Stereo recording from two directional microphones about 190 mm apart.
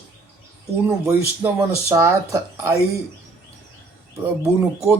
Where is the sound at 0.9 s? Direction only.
15° right (ahead or behind).